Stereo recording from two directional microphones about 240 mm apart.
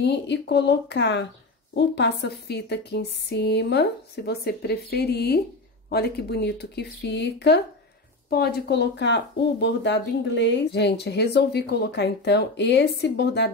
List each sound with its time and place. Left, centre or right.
0.0 s speech: left